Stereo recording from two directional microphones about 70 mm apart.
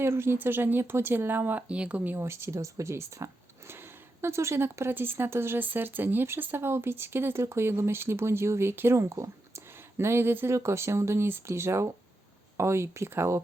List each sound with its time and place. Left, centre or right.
0.0 s speech: right
1.6 s speech: centre
2.1 s speech: right